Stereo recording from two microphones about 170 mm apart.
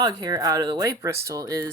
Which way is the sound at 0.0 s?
25° right (ahead or behind).